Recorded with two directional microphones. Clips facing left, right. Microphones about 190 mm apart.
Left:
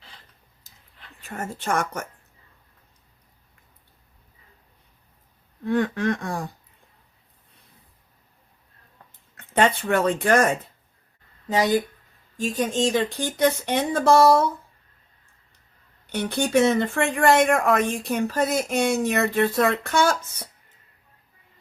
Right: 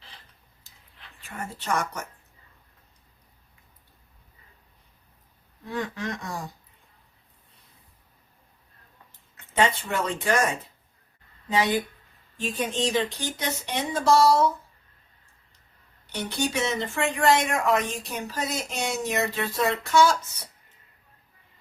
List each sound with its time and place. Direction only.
0.7 s whispering: 40° left (ahead or behind)
1.2 s speech: 45° left (ahead or behind)
5.6 s speech: 60° left (ahead or behind)
9.4 s speech: 55° left (ahead or behind)
12.4 s speech: 45° left (ahead or behind)
16.1 s speech: 55° left (ahead or behind)